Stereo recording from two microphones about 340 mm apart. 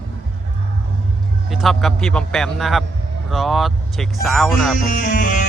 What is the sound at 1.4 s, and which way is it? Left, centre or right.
Speech, centre.